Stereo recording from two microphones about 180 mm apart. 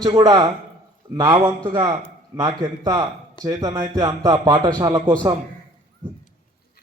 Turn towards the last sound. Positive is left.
turn(degrees=-25)  # may be behind; listen again after turning